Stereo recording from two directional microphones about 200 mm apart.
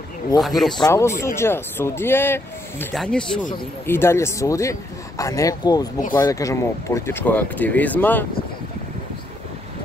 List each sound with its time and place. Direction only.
0.4 s speech: centre (ahead or behind)
0.7 s speech: 15° left (ahead or behind)